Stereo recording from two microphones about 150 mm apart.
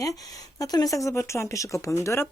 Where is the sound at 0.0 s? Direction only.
25° left (ahead or behind).